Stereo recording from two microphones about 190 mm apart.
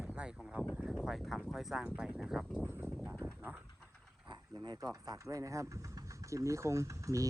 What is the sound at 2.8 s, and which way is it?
Vehicle, 5° left (ahead or behind).